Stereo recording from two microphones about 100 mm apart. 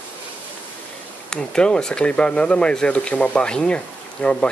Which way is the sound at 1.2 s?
5° left (ahead or behind).